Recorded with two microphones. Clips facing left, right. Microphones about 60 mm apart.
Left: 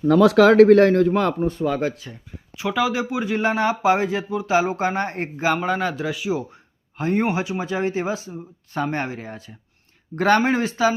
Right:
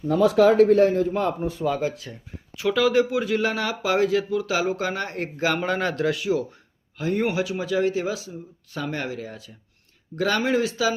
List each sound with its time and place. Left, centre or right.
0.0 s speech: left
1.4 s speech: left
2.6 s speech: centre
5.5 s speech: centre
6.9 s speech: left